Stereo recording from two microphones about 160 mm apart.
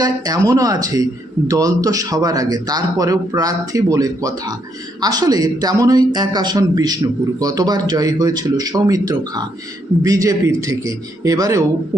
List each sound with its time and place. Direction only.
0.0 s speech: 20° right (ahead or behind)